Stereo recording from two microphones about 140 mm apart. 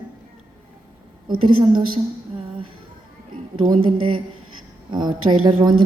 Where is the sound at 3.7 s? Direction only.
40° right (ahead or behind).